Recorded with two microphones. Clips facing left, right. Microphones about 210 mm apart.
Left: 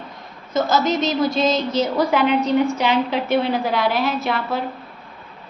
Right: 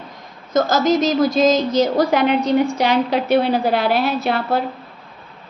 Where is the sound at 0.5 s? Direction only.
40° right (ahead or behind).